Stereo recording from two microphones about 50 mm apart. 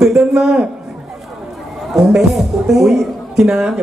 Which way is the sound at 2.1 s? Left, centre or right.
Centre.